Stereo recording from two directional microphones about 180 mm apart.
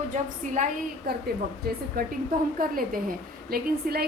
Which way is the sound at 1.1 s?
60° right (ahead or behind).